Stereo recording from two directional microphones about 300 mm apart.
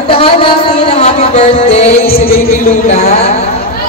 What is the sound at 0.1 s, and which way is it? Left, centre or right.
Music, centre.